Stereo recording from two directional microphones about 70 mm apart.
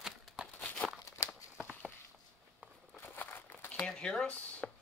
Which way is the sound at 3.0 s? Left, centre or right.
Left.